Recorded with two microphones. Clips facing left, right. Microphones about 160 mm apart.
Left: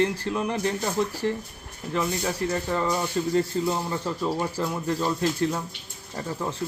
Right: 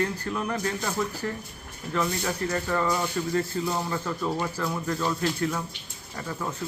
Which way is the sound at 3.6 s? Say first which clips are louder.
Left 2 dB; 25° left (ahead or behind).